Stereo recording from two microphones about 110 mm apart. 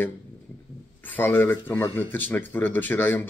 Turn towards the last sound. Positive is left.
turn(degrees=20)  # may be behind; listen again after turning